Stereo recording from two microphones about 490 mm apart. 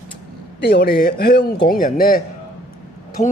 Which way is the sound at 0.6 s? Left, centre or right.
Centre.